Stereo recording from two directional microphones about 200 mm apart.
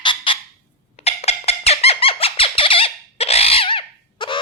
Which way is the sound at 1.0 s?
30° left (ahead or behind).